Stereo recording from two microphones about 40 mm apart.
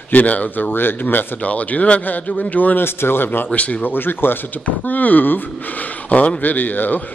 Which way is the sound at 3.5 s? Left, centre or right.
Left.